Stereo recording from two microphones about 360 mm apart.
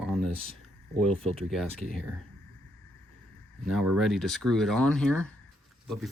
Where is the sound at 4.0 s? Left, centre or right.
Centre.